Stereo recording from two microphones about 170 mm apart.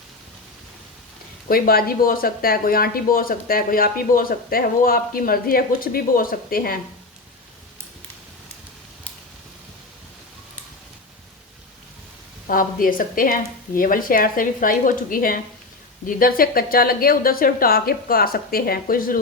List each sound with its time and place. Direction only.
1.5 s speech: 60° left (ahead or behind)
12.5 s speech: 55° left (ahead or behind)